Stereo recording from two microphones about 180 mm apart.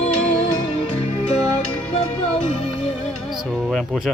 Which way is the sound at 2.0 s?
30° left (ahead or behind).